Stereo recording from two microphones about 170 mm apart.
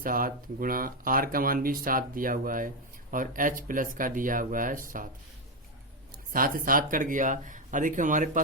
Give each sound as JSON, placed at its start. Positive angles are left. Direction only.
{"t": 0.0, "sound": "speech", "side_deg": -55}
{"t": 6.3, "sound": "speech", "side_deg": -55}